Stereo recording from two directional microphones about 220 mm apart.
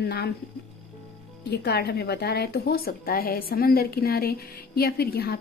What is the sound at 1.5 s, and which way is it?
Speech, 45° left (ahead or behind).